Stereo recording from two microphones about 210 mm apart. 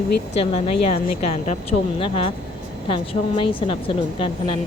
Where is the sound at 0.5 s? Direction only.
30° left (ahead or behind).